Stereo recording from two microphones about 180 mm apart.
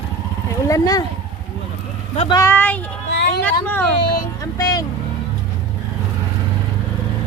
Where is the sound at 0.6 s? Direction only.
20° left (ahead or behind).